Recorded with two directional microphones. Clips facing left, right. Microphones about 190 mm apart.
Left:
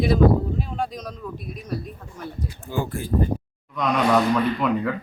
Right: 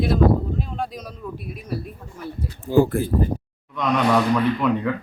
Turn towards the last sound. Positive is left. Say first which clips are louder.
# right 1 dB
turn(degrees=0)  # may be behind; listen again after turning